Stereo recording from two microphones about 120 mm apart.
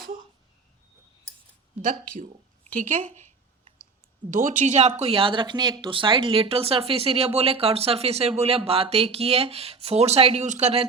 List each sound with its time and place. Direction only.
1.8 s speech: 90° right
4.3 s speech: 90° right; by 10.8 s 65° right (ahead or behind)